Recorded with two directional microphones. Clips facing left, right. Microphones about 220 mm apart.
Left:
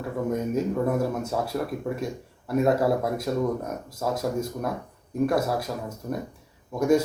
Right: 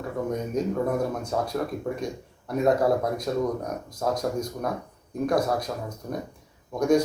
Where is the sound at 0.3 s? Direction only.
5° left (ahead or behind).